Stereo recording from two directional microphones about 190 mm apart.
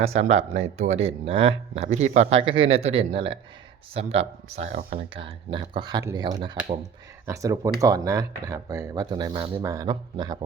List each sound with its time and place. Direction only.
0.0 s speech: 35° right (ahead or behind)